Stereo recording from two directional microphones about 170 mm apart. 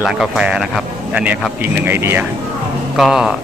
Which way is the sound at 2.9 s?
Centre (ahead or behind).